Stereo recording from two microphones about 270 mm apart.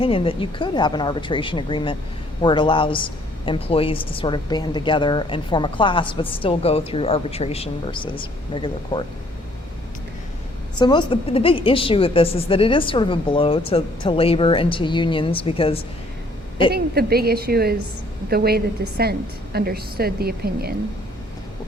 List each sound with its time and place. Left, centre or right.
0.0 s a woman's voice: centre
10.8 s a woman's voice: centre
16.7 s a woman's voice: right